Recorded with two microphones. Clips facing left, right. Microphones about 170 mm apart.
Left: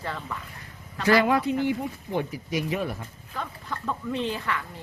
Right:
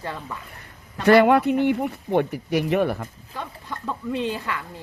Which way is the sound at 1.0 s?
65° right (ahead or behind).